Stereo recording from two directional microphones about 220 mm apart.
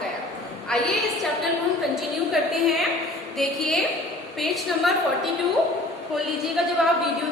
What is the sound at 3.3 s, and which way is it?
A woman's voice, centre (ahead or behind).